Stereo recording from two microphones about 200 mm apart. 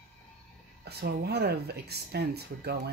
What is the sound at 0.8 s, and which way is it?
Speech, 55° right (ahead or behind).